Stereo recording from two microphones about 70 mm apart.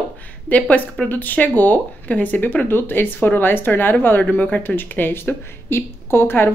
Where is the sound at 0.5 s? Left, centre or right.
Left.